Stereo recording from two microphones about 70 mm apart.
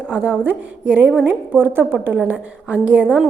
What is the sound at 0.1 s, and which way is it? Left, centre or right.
A woman's voice, right.